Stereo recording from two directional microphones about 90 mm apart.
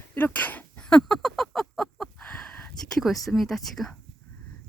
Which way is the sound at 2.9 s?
Centre (ahead or behind).